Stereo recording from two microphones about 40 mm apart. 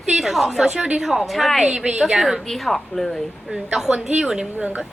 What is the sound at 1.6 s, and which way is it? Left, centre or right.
Speech, centre.